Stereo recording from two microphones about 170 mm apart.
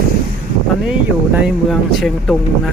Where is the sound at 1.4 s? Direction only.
Centre (ahead or behind).